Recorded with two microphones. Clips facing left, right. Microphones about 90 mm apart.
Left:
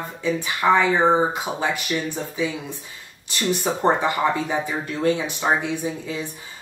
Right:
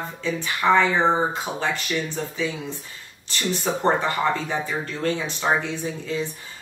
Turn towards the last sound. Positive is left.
turn(degrees=15)  # may be behind; listen again after turning